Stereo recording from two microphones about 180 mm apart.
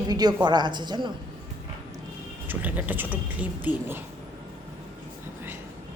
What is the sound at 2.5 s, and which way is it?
A woman's voice, 10° right (ahead or behind).